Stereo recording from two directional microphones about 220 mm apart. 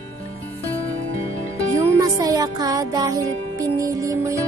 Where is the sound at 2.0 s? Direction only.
15° right (ahead or behind).